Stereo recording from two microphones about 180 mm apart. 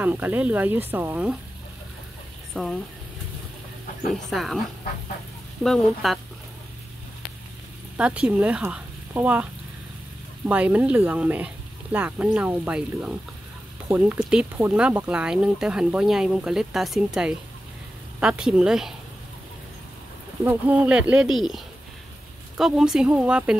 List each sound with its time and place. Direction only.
0.0 s speech: 10° right (ahead or behind)
2.5 s speech: 5° left (ahead or behind)
4.1 s speech: centre (ahead or behind)
5.6 s speech: centre (ahead or behind)
8.0 s speech: 5° right (ahead or behind)
10.5 s speech: 10° right (ahead or behind)
20.4 s speech: 10° right (ahead or behind)